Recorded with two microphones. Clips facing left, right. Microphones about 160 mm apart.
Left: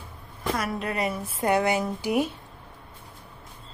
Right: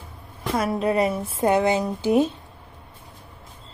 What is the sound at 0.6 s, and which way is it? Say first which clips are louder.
A woman's voice: right 9 dB; 30° right (ahead or behind).